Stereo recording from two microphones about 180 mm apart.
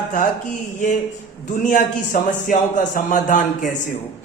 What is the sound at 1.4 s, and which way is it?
A man's voice, 45° left (ahead or behind).